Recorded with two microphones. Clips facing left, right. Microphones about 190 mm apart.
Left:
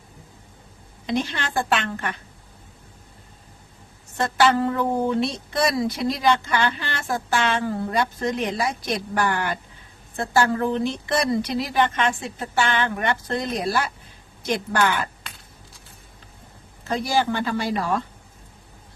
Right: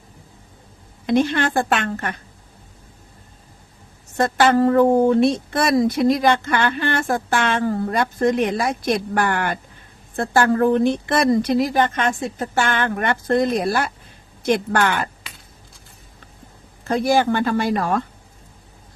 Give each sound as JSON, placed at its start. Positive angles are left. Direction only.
{"t": 1.0, "sound": "speech", "side_deg": -55}
{"t": 4.2, "sound": "speech", "side_deg": -50}
{"t": 16.9, "sound": "speech", "side_deg": -55}